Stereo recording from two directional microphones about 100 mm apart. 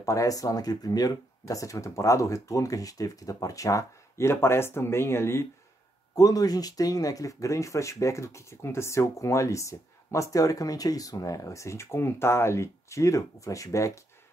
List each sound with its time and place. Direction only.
0.0 s speech: 35° left (ahead or behind)
6.1 s speech: 40° left (ahead or behind)